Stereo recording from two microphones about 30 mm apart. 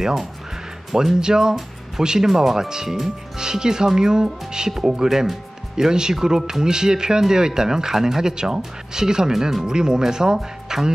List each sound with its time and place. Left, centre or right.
1.2 s speech: right
9.3 s speech: centre
9.7 s speech: right